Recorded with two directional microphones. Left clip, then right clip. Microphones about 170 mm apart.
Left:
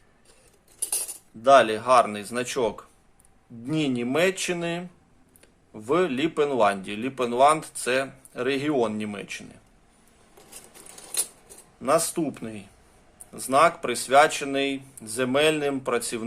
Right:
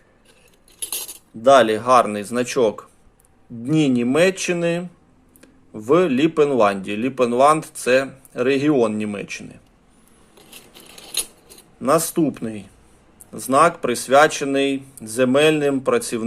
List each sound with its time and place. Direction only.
1.4 s speech: 25° right (ahead or behind)
11.8 s speech: 25° right (ahead or behind)